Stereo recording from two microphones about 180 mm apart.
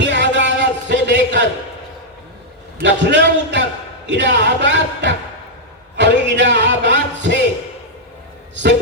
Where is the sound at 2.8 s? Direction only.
80° right.